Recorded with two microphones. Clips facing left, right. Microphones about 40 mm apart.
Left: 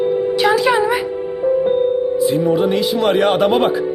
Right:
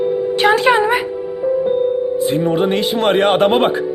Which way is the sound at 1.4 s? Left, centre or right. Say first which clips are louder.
Left 1 dB; centre.